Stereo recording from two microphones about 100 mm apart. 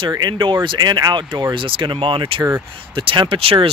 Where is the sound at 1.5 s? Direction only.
60° right (ahead or behind).